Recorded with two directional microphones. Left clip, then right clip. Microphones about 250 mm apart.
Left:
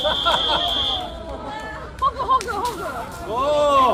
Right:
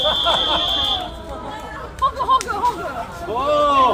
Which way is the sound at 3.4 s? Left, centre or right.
Left.